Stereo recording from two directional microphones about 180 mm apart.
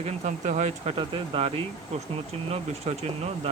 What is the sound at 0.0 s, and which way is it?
Speech, 40° right (ahead or behind).